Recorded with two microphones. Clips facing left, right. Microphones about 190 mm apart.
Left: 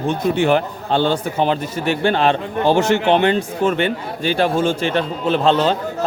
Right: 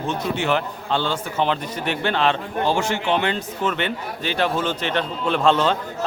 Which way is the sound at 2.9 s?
70° left (ahead or behind).